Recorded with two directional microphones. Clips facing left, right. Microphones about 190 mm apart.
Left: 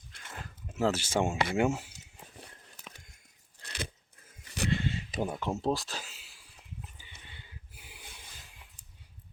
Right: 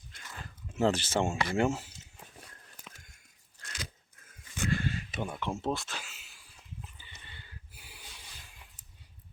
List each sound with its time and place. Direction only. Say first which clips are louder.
0.8 s speech: even; 5° left (ahead or behind)
3.6 s biting: left 5 dB; 35° left (ahead or behind)
4.7 s a sound: even; 25° left (ahead or behind)
5.1 s speech: left 3 dB; 35° left (ahead or behind)